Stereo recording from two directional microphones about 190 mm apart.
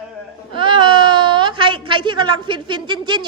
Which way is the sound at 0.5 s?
25° right (ahead or behind).